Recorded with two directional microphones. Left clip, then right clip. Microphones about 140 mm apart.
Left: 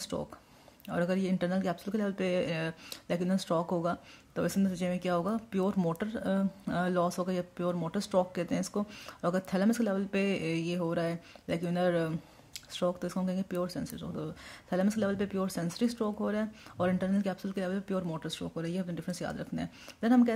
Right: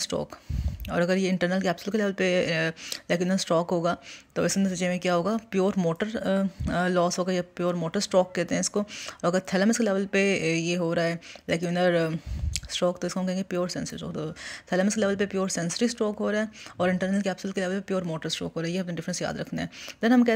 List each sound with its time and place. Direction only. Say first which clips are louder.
0.0 s speech: right 7 dB; 15° right (ahead or behind)